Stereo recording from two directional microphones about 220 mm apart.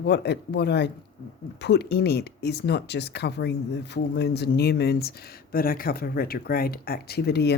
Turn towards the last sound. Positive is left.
turn(degrees=50)  # may be behind; listen again after turning